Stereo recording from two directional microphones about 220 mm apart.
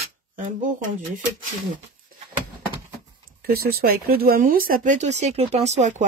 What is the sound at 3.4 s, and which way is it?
Speech, 45° right (ahead or behind).